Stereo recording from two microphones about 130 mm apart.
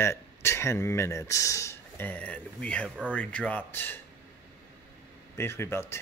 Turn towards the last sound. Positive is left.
turn(degrees=20)  # may be behind; listen again after turning